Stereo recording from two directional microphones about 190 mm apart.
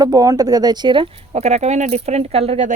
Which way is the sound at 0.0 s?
20° right (ahead or behind).